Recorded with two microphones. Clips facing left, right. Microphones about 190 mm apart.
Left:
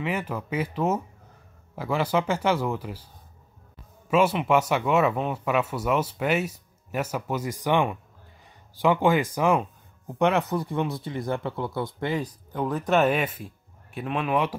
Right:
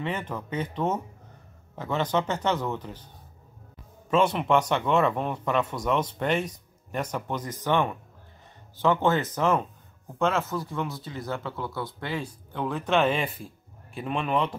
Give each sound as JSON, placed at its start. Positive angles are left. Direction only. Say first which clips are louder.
{"t": 0.0, "sound": "speech", "louder": "left 2 dB", "side_deg": 10}
{"t": 4.1, "sound": "speech", "louder": "left 1 dB", "side_deg": 5}
{"t": 12.8, "sound": "speech", "louder": "left 2 dB", "side_deg": 5}